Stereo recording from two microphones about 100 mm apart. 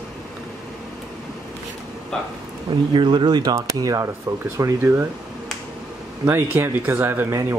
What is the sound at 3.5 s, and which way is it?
Speech, 35° right (ahead or behind).